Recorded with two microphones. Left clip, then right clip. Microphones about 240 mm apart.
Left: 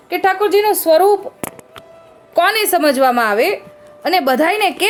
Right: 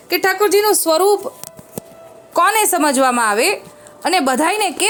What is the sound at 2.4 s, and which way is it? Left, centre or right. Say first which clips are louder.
A woman's voice: even; centre.